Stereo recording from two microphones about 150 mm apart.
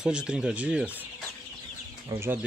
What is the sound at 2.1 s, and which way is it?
Speech, 15° right (ahead or behind).